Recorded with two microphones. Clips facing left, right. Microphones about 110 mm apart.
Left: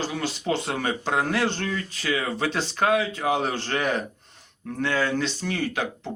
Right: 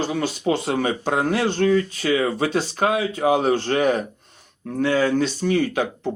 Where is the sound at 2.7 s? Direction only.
25° right (ahead or behind).